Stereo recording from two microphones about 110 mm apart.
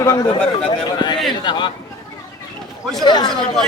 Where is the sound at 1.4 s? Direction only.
45° left (ahead or behind).